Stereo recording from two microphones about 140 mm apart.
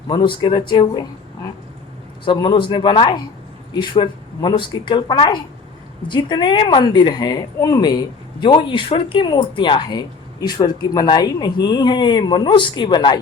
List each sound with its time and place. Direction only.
0.1 s a woman's voice: 35° left (ahead or behind)
2.2 s a woman's voice: 35° left (ahead or behind)